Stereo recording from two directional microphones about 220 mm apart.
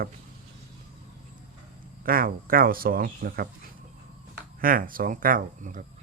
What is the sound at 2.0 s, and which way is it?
Speech, 40° right (ahead or behind).